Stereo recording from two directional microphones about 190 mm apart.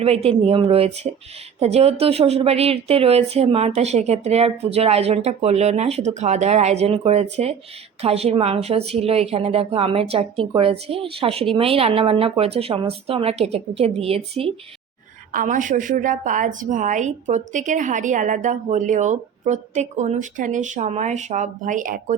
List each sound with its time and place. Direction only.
0.0 s a woman's voice: 30° right (ahead or behind)
15.3 s a woman's voice: 45° right (ahead or behind)